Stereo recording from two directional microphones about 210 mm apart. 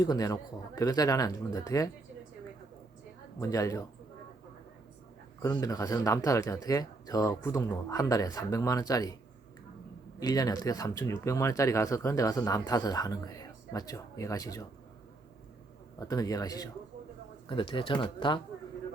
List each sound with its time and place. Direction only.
0.0 s speech: 15° left (ahead or behind)
3.4 s speech: 15° left (ahead or behind)
5.4 s speech: 15° left (ahead or behind)
10.2 s speech: 15° left (ahead or behind)
16.0 s speech: 15° left (ahead or behind)